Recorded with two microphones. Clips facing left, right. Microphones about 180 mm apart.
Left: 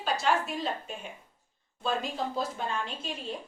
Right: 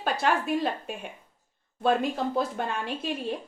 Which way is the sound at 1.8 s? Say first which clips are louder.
Right 6 dB; 60° right (ahead or behind).